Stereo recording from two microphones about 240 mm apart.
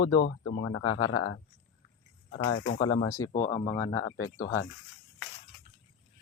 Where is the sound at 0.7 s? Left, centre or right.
Left.